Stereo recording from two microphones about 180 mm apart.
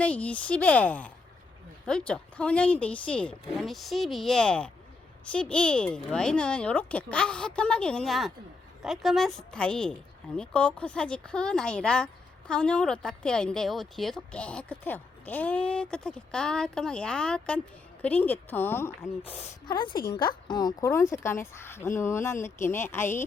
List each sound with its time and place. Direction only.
0.0 s a woman's voice: 5° left (ahead or behind)
19.6 s a woman's voice: 25° left (ahead or behind)